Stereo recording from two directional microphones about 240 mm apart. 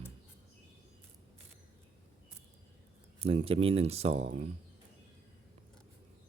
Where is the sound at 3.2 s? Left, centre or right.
Right.